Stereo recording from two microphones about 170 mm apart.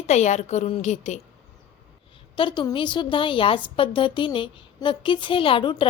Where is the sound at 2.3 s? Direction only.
30° left (ahead or behind).